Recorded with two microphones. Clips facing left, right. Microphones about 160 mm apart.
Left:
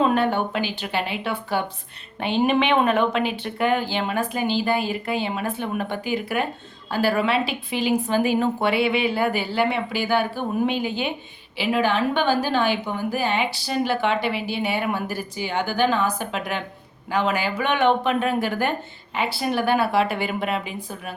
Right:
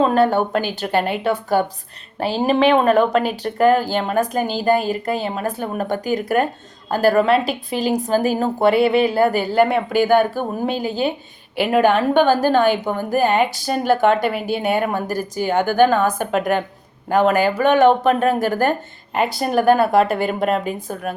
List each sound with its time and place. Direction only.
0.0 s a woman's voice: 40° right (ahead or behind)
11.5 s a woman's voice: 50° right (ahead or behind)